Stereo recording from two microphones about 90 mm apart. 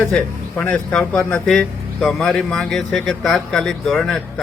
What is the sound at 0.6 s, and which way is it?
A man's voice, 10° left (ahead or behind).